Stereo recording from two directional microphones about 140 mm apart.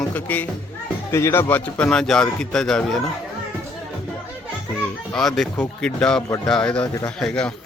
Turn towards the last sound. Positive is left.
turn(degrees=5)  # may be behind; listen again after turning